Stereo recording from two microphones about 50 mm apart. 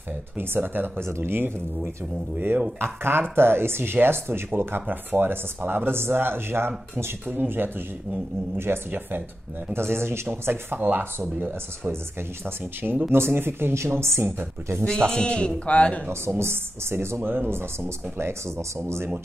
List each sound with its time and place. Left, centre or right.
0.4 s speech: right
2.3 s speech: right
2.8 s speech: right
11.9 s speech: right
13.8 s speech: right
14.8 s a man's voice: centre
16.1 s speech: right